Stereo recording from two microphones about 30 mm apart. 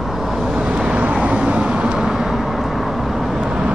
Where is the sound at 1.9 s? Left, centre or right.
Centre.